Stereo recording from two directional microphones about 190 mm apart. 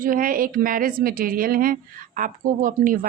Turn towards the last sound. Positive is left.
turn(degrees=-45)  # may be behind; listen again after turning